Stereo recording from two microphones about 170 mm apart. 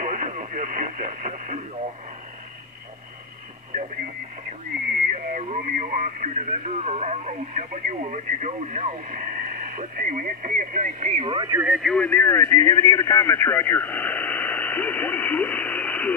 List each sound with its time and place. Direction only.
0.0 s radio: 50° right (ahead or behind)
3.7 s radio: 50° right (ahead or behind)
5.1 s speech: 45° right (ahead or behind)
11.2 s speech: 30° right (ahead or behind)
11.5 s speech: 5° right (ahead or behind)